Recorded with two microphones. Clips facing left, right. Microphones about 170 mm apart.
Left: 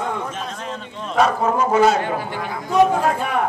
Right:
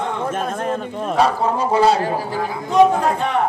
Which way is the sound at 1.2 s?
35° right (ahead or behind).